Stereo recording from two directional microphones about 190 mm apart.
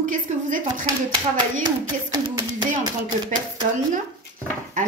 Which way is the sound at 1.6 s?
20° right (ahead or behind).